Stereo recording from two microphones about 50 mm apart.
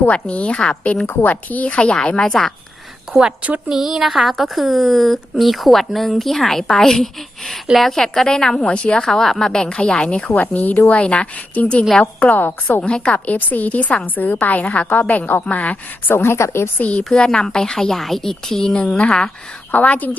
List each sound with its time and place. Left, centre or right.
0.1 s a woman's voice: left
1.0 s a woman's voice: left; by 2.5 s centre
3.1 s a woman's voice: centre; by 10.3 s left
10.3 s a woman's voice: left
12.8 s a woman's voice: left
13.1 s a woman's voice: left
16.1 s a woman's voice: left
16.7 s a woman's voice: left
17.1 s a woman's voice: centre
19.7 s a woman's voice: left